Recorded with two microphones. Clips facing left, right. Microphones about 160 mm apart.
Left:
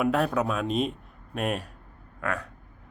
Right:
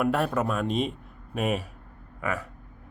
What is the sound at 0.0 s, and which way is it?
A man's voice, centre (ahead or behind).